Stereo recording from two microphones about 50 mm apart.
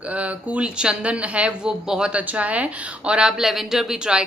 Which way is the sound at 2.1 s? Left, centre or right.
Right.